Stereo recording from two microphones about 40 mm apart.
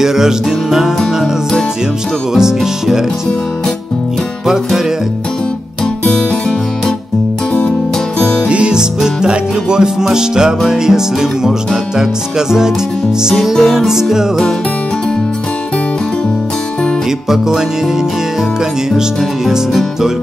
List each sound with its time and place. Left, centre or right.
0.0 s music: centre
2.3 s music: centre
8.5 s music: right
8.7 s music: centre
13.3 s music: centre
17.3 s music: centre
18.9 s music: centre